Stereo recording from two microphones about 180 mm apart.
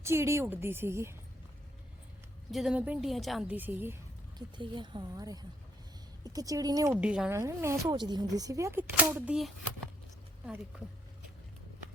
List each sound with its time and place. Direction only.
0.0 s speech: 15° right (ahead or behind)
2.5 s speech: centre (ahead or behind)
4.4 s speech: 25° right (ahead or behind)
7.0 s speech: 5° right (ahead or behind)